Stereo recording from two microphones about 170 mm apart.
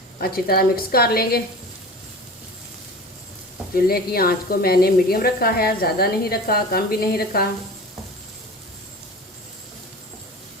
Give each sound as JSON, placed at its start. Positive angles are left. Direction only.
{"t": 0.2, "sound": "speech", "side_deg": 65}
{"t": 3.8, "sound": "speech", "side_deg": 60}